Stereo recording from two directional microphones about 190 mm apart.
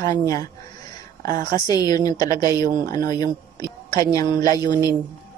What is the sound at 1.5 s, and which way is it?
A woman's voice, 20° left (ahead or behind).